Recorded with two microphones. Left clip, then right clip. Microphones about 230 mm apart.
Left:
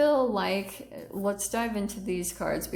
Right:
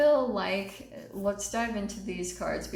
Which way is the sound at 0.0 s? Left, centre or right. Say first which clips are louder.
Even; left.